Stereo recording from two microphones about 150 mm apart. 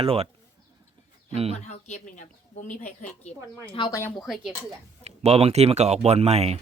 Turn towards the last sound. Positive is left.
turn(degrees=-45)  # may be behind; listen again after turning